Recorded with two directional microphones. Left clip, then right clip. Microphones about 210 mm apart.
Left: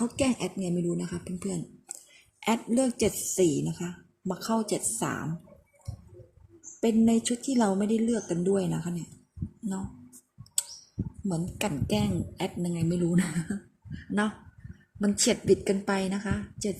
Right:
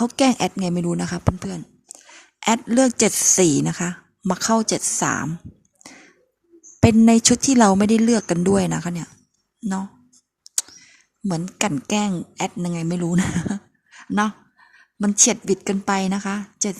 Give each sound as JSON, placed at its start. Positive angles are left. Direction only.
{"t": 0.0, "sound": "a woman's voice", "side_deg": -35}
{"t": 6.7, "sound": "a woman's voice", "side_deg": -35}
{"t": 11.3, "sound": "a woman's voice", "side_deg": -35}
{"t": 15.0, "sound": "a woman's voice", "side_deg": -30}